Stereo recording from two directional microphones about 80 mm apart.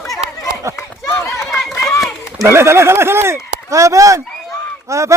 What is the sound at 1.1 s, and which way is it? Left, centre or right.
Run, left.